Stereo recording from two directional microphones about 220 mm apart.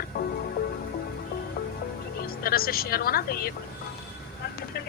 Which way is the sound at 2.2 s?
40° left (ahead or behind).